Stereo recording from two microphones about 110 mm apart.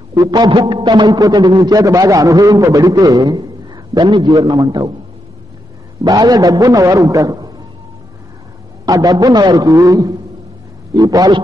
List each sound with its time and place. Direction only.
0.1 s a man's voice: 35° right (ahead or behind)
6.0 s a man's voice: 35° right (ahead or behind)
8.8 s a man's voice: 35° right (ahead or behind)